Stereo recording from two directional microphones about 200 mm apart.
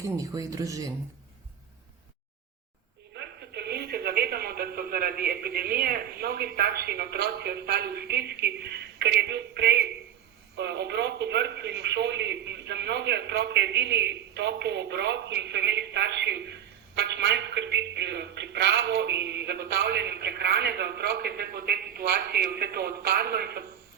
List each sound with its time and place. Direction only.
0.2 s speech: 15° right (ahead or behind)
3.2 s a man's voice: 55° right (ahead or behind)